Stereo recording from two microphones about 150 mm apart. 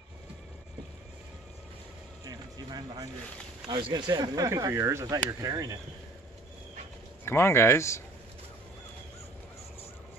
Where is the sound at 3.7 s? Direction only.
30° right (ahead or behind).